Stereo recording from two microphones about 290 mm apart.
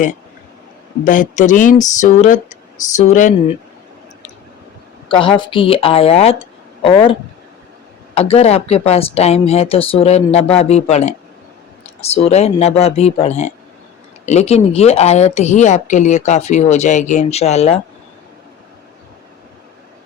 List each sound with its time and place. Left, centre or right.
1.0 s a woman's voice: left
5.0 s a woman's voice: centre